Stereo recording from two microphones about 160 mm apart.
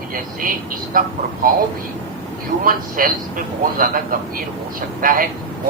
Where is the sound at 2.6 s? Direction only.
60° right (ahead or behind).